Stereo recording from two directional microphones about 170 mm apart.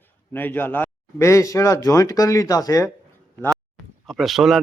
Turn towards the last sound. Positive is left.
turn(degrees=0)  # may be behind; listen again after turning